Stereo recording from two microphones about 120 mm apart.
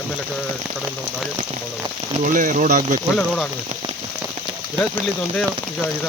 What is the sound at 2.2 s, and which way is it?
Speech, 90° right.